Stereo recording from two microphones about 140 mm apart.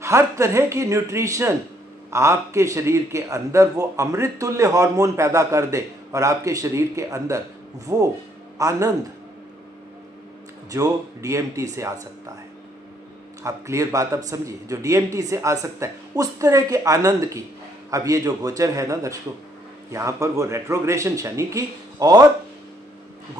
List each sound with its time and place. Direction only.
0.0 s a man's voice: 20° right (ahead or behind)
10.7 s a man's voice: 25° right (ahead or behind)
13.4 s a man's voice: 20° right (ahead or behind)